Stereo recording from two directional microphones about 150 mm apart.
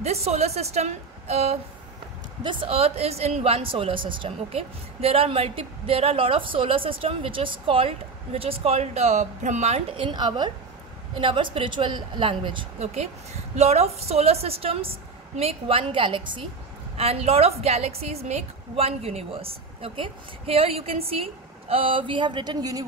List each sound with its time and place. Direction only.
0.0 s a woman's voice: 45° right (ahead or behind)
9.9 s a woman's voice: 30° right (ahead or behind)